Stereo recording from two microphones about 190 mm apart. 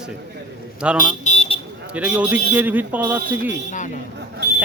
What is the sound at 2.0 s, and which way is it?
A man's voice, 5° right (ahead or behind).